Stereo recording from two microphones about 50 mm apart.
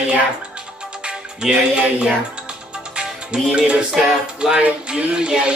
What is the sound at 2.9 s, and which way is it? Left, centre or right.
Music, centre.